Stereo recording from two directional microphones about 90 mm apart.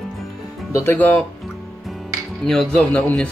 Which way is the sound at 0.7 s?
35° left (ahead or behind).